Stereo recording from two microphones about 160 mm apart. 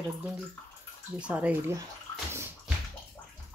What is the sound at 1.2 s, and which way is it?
Speech, 10° right (ahead or behind).